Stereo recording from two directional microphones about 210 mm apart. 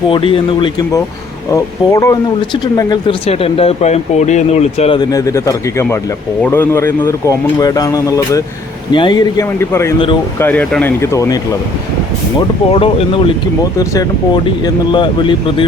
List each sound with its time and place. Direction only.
0.1 s speech: 25° left (ahead or behind)
12.7 s speech: 25° left (ahead or behind)